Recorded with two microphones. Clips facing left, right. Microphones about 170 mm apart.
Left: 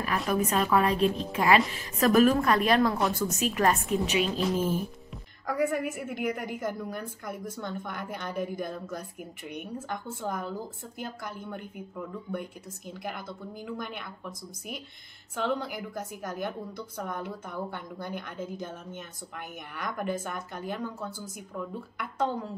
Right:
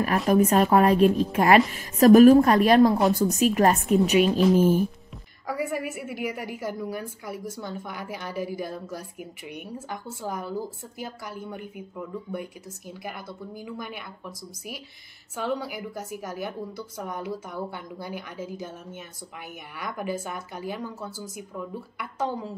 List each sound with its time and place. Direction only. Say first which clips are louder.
0.3 s speech: right 7 dB; 45° right (ahead or behind)
4.4 s a woman's voice: right 8 dB; 5° right (ahead or behind)
15.3 s a woman's voice: right 1 dB; 5° right (ahead or behind)